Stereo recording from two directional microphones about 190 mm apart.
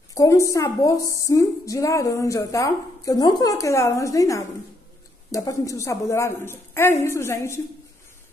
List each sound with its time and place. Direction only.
0.1 s a woman's voice: 15° left (ahead or behind)